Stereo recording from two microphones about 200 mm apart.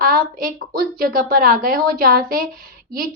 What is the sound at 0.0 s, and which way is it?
A woman's voice, 45° right (ahead or behind).